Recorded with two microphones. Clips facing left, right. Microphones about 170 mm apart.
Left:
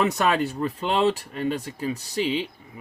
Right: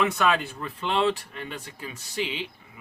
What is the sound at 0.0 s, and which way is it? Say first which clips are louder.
Speech: left 2 dB; 40° left (ahead or behind).